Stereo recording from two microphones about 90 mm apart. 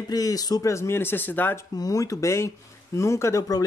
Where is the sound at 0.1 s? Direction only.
45° left (ahead or behind); by 1.6 s 20° left (ahead or behind).